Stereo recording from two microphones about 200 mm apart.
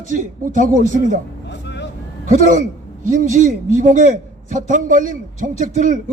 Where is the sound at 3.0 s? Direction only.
40° right (ahead or behind).